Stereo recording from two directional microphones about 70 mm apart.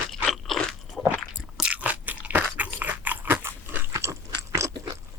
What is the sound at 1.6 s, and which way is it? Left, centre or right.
Crunch, centre.